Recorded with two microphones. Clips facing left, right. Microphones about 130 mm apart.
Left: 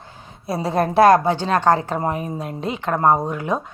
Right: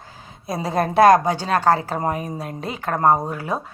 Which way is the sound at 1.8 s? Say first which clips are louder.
Left 1 dB; 35° right (ahead or behind).